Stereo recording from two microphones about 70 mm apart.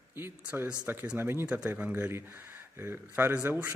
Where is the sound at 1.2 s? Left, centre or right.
Right.